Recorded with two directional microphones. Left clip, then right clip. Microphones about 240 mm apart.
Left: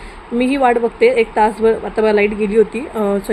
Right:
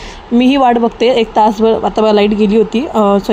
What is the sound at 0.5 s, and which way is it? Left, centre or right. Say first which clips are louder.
Speech: right 2 dB; right.